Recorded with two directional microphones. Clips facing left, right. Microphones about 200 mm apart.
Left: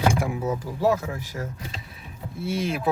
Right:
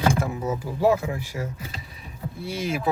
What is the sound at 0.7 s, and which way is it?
Speech, 15° right (ahead or behind).